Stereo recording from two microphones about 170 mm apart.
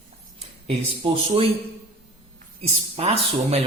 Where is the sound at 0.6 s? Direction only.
35° right (ahead or behind).